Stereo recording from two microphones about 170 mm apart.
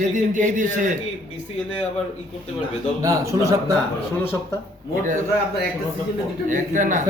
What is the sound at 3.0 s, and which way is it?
Speech, 20° right (ahead or behind).